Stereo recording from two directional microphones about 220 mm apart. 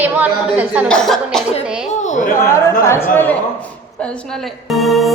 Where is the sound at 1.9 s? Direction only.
35° left (ahead or behind).